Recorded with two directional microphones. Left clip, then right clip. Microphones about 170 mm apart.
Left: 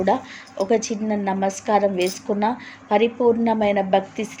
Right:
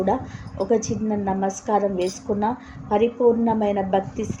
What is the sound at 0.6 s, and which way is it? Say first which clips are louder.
A woman's voice: left 1 dB; 20° left (ahead or behind).